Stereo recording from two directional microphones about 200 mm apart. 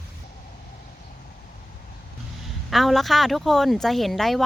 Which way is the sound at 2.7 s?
Centre (ahead or behind).